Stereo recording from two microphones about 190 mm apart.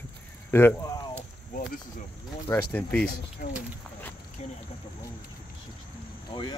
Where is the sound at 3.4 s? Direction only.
45° left (ahead or behind).